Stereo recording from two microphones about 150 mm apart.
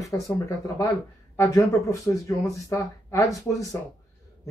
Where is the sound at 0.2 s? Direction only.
20° left (ahead or behind).